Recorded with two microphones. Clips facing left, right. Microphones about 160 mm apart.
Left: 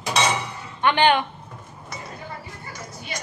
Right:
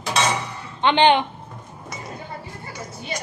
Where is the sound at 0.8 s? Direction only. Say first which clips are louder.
Right 2 dB; 20° right (ahead or behind).